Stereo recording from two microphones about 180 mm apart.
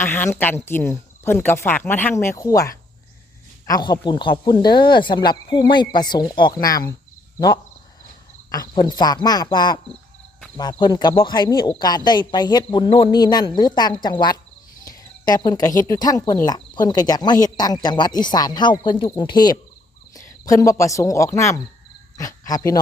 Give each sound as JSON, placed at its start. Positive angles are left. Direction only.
{"t": 0.0, "sound": "speech", "side_deg": 15}